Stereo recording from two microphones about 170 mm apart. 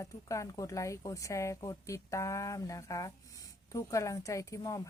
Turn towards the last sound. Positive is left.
turn(degrees=20)  # may be behind; listen again after turning